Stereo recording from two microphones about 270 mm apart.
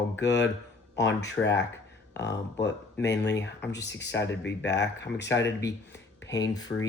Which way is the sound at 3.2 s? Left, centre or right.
Left.